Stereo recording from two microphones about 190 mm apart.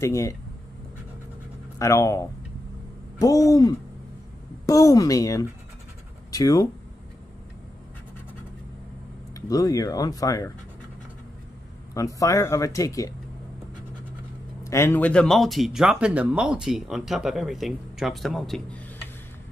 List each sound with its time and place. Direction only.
0.0 s speech: 15° left (ahead or behind)
1.8 s speech: 15° left (ahead or behind)
9.3 s speech: 20° left (ahead or behind)
11.9 s speech: 15° left (ahead or behind)
14.6 s speech: 15° left (ahead or behind)